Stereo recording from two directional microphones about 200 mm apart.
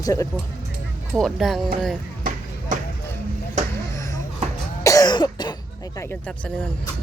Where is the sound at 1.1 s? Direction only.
Centre (ahead or behind).